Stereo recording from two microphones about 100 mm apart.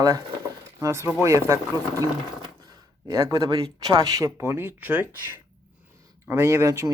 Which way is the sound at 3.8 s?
40° right (ahead or behind).